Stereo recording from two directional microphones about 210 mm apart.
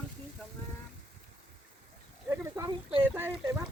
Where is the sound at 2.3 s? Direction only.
15° right (ahead or behind).